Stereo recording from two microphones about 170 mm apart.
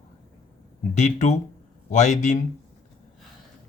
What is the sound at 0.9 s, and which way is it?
Speech, 45° left (ahead or behind).